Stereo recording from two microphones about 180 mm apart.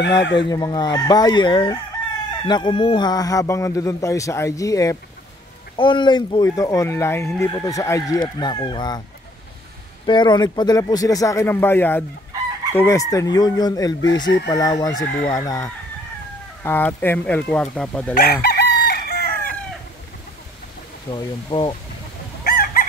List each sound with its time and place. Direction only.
0.2 s speech: 75° left (ahead or behind)
0.5 s speech: 20° left (ahead or behind)
10.0 s speech: 25° left (ahead or behind); by 18.1 s 5° left (ahead or behind)
18.1 s chicken: 60° left (ahead or behind)
21.1 s speech: 25° left (ahead or behind)
22.4 s chicken: 55° left (ahead or behind)